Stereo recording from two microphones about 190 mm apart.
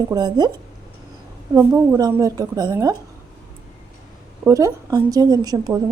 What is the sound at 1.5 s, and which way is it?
A woman's voice, 15° right (ahead or behind).